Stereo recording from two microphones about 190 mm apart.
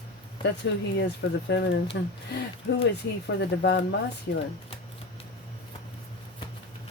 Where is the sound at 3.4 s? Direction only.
65° left (ahead or behind).